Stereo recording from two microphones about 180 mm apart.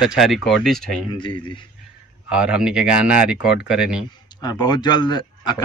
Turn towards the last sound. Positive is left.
turn(degrees=25)  # may be behind; listen again after turning